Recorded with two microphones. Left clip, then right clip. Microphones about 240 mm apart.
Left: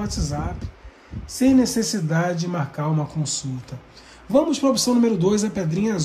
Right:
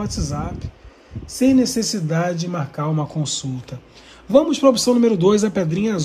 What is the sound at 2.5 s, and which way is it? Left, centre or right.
Speech, centre.